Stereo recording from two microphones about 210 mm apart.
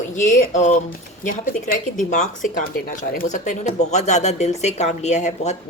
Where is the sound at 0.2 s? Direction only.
35° left (ahead or behind).